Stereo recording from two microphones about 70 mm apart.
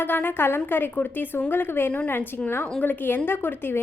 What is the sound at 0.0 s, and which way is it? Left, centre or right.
A woman's voice, left.